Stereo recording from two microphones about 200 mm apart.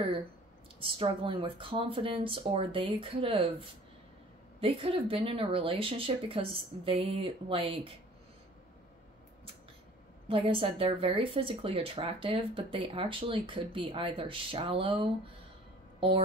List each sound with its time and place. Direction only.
0.7 s speech: 25° right (ahead or behind)
10.2 s speech: 25° right (ahead or behind)